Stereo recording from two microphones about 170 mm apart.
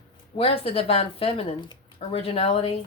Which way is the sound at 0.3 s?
35° left (ahead or behind).